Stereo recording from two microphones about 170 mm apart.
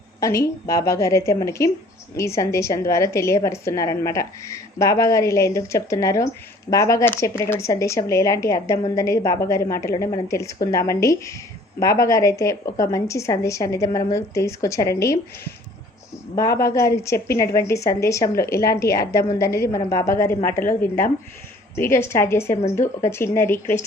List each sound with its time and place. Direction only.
0.2 s a woman's voice: 20° left (ahead or behind)
21.8 s speech: 15° left (ahead or behind)